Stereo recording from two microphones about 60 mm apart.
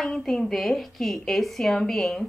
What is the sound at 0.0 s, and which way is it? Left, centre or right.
A woman's voice, centre.